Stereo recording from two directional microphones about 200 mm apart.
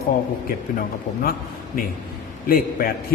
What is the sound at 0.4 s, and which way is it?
A man's voice, 45° left (ahead or behind).